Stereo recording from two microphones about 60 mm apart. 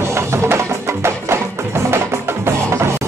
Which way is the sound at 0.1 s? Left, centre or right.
Right.